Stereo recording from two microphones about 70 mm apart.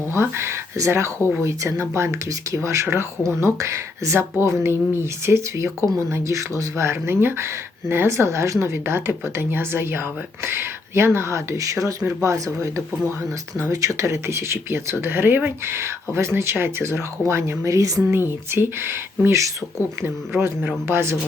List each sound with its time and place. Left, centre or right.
0.1 s speech: right
18.1 s speech: right